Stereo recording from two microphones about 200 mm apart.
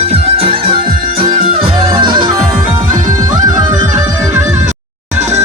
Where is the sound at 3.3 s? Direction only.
20° right (ahead or behind).